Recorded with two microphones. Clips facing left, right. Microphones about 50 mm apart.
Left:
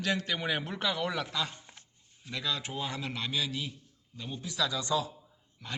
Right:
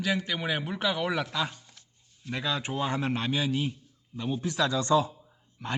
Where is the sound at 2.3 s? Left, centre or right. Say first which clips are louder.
Right 4 dB; right.